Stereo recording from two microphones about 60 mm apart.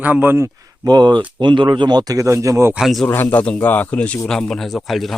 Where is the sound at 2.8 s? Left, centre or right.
Centre.